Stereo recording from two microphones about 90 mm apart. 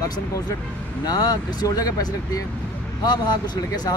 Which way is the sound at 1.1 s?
45° left (ahead or behind).